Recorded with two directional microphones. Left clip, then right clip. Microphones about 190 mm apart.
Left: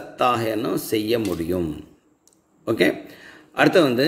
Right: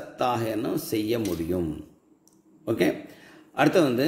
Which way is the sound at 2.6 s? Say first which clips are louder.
Left 5 dB; 20° left (ahead or behind).